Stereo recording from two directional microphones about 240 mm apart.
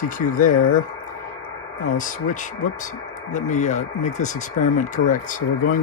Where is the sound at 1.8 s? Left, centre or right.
Left.